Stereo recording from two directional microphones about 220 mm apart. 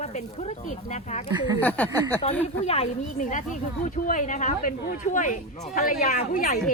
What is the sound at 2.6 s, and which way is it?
A woman's voice, 30° left (ahead or behind).